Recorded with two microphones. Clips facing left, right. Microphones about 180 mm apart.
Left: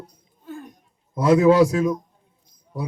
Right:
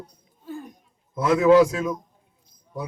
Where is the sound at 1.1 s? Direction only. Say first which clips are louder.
Left 1 dB; 35° left (ahead or behind).